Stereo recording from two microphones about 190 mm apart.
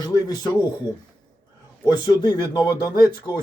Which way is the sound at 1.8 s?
20° left (ahead or behind).